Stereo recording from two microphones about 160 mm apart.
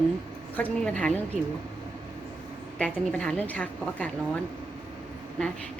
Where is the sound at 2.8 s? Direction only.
5° left (ahead or behind).